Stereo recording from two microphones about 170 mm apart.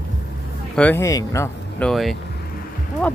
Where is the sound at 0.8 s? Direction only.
10° left (ahead or behind).